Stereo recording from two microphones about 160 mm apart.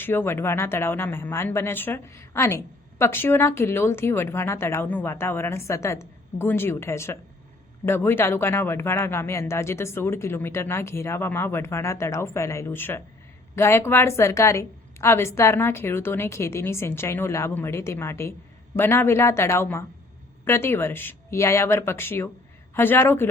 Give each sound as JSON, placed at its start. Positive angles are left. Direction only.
{"t": 0.0, "sound": "speech", "side_deg": 15}